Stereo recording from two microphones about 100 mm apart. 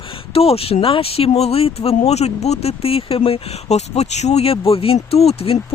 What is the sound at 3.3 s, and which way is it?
Speech, 90° left.